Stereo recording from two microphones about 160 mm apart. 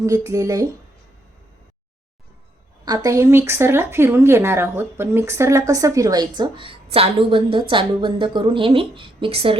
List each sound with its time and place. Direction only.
0.0 s speech: 20° right (ahead or behind)
2.8 s a woman's voice: 25° right (ahead or behind)